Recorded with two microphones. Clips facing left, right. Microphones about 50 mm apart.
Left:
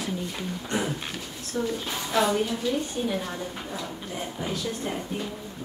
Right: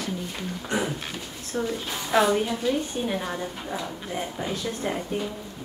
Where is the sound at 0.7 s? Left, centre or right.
Centre.